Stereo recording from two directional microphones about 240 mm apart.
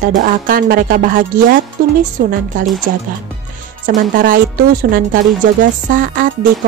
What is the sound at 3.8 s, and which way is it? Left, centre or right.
Speech, right.